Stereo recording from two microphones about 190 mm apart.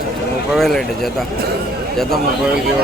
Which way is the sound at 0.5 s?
Centre (ahead or behind).